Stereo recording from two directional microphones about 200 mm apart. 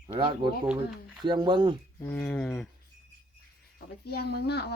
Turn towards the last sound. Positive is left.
turn(degrees=55)  # may be behind; listen again after turning